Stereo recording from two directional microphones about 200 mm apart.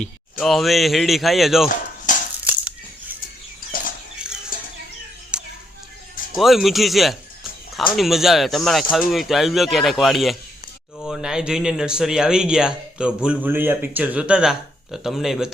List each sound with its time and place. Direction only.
0.0 s speech: centre (ahead or behind)
2.1 s cutlery: 40° left (ahead or behind)
2.4 s bird flight: 5° right (ahead or behind)
3.7 s a sound: 45° left (ahead or behind)
4.2 s a sound: 5° right (ahead or behind)
5.3 s music: 5° right (ahead or behind)
6.3 s speech: centre (ahead or behind)